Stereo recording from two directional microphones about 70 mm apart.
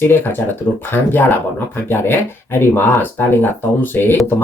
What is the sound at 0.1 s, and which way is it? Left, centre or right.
Speech, left.